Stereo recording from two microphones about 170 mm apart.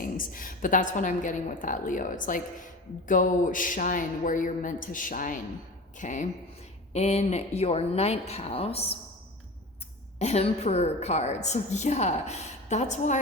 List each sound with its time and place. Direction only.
0.0 s a woman's voice: 55° left (ahead or behind); by 9.0 s 35° left (ahead or behind)
10.2 s a woman's voice: 40° left (ahead or behind)